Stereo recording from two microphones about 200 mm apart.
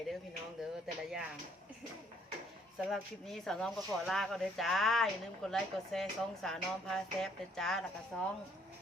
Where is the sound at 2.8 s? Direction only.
Centre (ahead or behind).